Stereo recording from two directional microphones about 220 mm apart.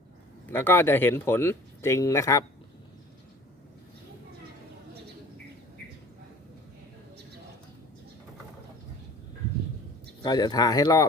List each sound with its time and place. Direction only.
0.4 s speech: 10° left (ahead or behind)
10.2 s speech: 20° left (ahead or behind)